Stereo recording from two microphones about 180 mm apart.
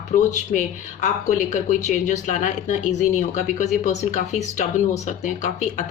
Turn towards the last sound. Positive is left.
turn(degrees=40)  # may be behind; listen again after turning